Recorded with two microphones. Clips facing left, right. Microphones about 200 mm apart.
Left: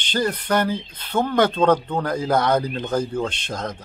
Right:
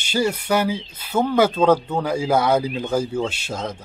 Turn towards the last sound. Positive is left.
turn(degrees=-5)  # may be behind; listen again after turning